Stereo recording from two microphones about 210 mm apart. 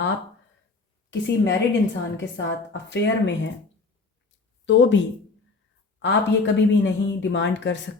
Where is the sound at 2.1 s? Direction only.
60° left (ahead or behind).